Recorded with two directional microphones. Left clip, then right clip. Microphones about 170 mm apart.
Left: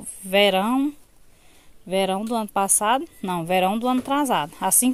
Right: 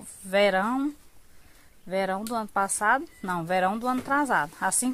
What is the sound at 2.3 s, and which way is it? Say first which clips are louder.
Speech: left 4 dB; 50° left (ahead or behind).